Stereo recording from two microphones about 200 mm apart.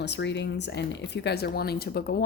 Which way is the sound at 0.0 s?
60° left (ahead or behind).